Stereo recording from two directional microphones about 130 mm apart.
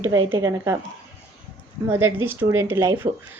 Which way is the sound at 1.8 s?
20° right (ahead or behind).